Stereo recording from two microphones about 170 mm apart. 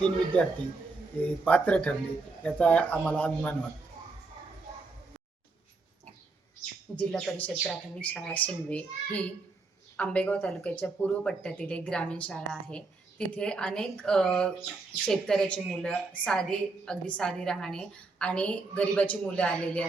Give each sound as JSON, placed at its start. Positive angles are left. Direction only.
{"t": 0.3, "sound": "speech", "side_deg": 10}
{"t": 6.9, "sound": "speech", "side_deg": 5}